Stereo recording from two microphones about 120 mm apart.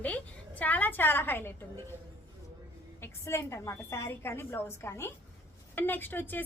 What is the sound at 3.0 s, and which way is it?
A woman's voice, 25° left (ahead or behind).